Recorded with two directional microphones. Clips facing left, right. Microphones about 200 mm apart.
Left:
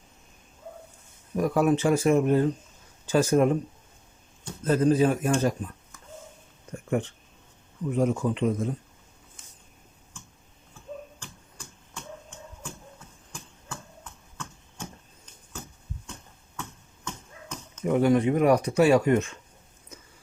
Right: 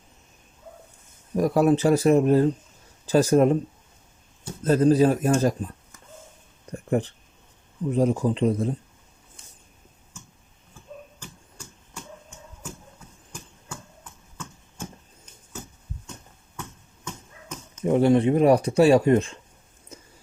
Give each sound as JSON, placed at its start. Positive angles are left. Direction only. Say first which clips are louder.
{"t": 1.4, "sound": "speech", "louder": "right 3 dB", "side_deg": -35}
{"t": 4.6, "sound": "speech", "louder": "right 3 dB", "side_deg": -35}
{"t": 6.7, "sound": "a sound", "louder": "right 3 dB", "side_deg": -35}
{"t": 7.9, "sound": "speech", "louder": "right 3 dB", "side_deg": -35}
{"t": 13.3, "sound": "a sound", "louder": "right 1 dB", "side_deg": -5}
{"t": 17.8, "sound": "speech", "louder": "right 3 dB", "side_deg": -30}